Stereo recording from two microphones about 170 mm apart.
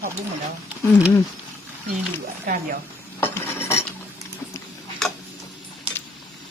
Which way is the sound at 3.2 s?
15° left (ahead or behind).